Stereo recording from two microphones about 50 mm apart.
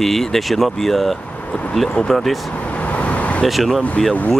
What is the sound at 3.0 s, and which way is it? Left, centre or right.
Vehicle, left.